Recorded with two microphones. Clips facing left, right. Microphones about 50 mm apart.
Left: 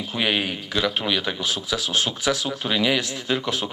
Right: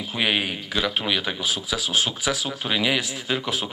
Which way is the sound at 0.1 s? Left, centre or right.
Centre.